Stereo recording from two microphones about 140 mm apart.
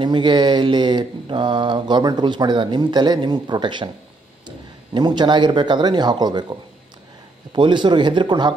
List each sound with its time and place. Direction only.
0.0 s speech: 35° right (ahead or behind)